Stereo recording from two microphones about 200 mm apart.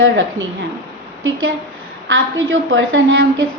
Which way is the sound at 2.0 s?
75° right (ahead or behind).